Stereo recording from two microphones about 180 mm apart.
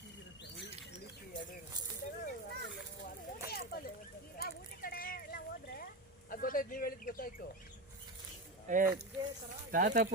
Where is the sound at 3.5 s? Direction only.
60° left (ahead or behind).